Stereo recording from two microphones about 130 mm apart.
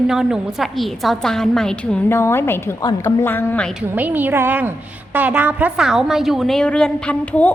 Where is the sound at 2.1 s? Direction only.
20° left (ahead or behind).